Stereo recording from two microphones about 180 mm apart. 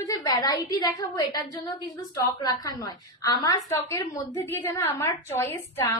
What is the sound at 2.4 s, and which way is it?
A woman's voice, 20° left (ahead or behind).